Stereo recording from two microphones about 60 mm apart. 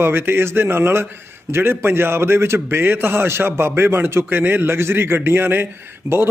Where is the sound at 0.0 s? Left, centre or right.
Right.